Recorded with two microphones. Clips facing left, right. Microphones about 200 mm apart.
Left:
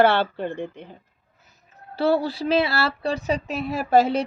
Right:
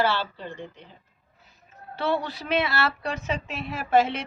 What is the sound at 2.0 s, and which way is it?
Speech, 35° left (ahead or behind).